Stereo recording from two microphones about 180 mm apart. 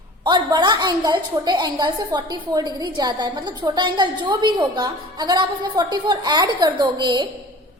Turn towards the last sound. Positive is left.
turn(degrees=-25)  # may be behind; listen again after turning